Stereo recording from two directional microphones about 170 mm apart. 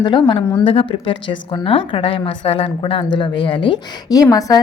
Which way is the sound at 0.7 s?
30° left (ahead or behind).